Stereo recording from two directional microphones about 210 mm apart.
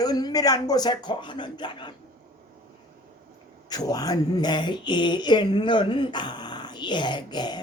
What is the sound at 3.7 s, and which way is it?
Speech, 20° left (ahead or behind).